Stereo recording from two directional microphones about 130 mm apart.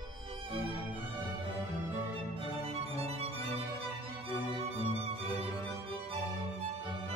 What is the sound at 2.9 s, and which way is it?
Music, 50° right (ahead or behind).